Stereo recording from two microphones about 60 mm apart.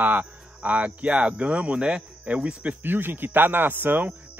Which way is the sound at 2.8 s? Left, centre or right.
Right.